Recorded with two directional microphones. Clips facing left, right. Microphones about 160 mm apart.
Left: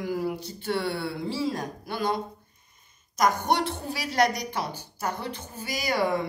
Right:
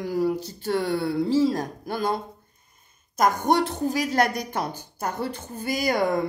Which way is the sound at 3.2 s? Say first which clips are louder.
Right 3 dB; 45° right (ahead or behind).